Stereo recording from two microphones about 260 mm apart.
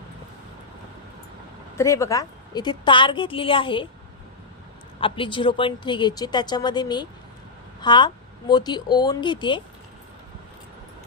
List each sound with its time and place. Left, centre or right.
1.7 s a woman's voice: centre
4.9 s speech: centre